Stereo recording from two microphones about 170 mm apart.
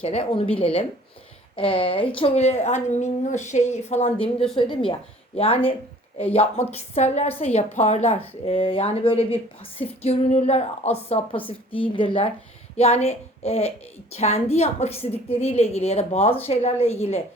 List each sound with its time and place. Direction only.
0.0 s a woman's voice: 35° left (ahead or behind)